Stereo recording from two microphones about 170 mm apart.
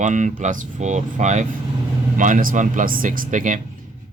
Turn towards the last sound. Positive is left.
turn(degrees=-50)  # may be behind; listen again after turning